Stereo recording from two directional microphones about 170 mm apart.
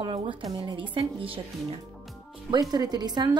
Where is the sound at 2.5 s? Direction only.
25° right (ahead or behind).